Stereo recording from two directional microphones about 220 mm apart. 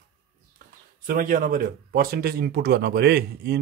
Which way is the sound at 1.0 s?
35° right (ahead or behind).